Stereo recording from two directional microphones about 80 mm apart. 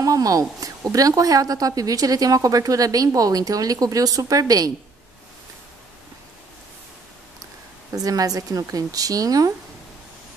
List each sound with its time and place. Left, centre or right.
0.0 s a woman's voice: right
7.9 s a woman's voice: right